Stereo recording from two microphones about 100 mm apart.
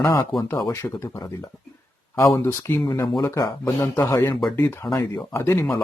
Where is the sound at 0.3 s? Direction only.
Centre (ahead or behind).